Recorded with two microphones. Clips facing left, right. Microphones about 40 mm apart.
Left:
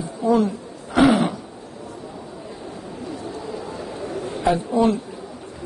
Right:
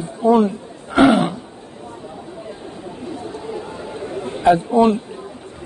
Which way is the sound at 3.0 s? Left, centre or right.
Right.